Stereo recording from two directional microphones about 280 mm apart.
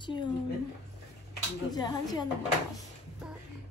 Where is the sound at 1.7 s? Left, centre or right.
Centre.